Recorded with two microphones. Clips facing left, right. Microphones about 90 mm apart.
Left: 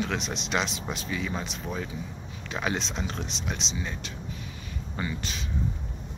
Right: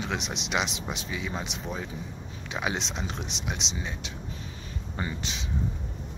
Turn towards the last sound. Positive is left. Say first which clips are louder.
# left 1 dB
turn(degrees=-20)  # may be behind; listen again after turning